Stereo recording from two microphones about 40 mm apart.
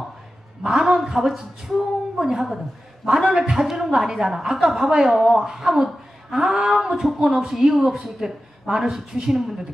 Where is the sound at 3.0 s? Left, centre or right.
Centre.